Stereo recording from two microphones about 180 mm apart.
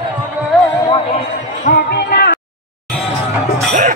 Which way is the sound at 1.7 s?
50° left (ahead or behind).